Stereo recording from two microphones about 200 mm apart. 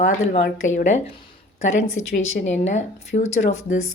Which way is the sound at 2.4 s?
35° left (ahead or behind).